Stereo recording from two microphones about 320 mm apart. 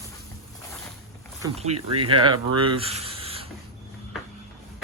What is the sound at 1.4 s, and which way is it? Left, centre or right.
Speech, centre.